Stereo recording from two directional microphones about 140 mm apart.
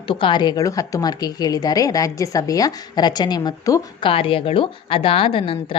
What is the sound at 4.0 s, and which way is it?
A woman's voice, 40° left (ahead or behind).